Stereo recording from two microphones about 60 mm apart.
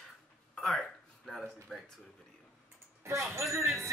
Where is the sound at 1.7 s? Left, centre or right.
Right.